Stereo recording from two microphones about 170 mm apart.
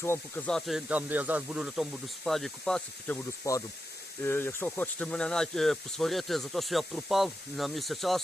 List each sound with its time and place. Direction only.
0.0 s speech: 10° left (ahead or behind)
0.9 s speech: 10° right (ahead or behind)
3.5 s speech: 20° left (ahead or behind); by 8.2 s centre (ahead or behind)